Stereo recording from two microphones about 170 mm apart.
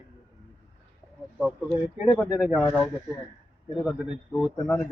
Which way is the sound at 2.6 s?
5° left (ahead or behind).